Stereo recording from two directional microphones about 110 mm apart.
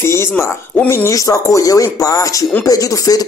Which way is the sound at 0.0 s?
25° left (ahead or behind).